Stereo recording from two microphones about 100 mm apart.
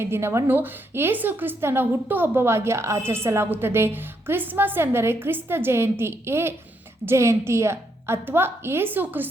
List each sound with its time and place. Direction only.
0.0 s a woman's voice: 25° right (ahead or behind)